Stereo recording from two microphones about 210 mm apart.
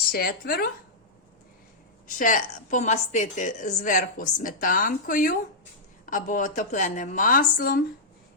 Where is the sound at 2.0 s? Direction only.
40° left (ahead or behind).